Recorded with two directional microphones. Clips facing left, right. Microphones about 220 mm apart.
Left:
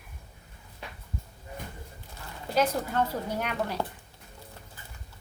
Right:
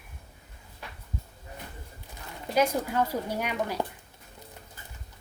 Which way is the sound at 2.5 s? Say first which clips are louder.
Right 1 dB; 10° right (ahead or behind).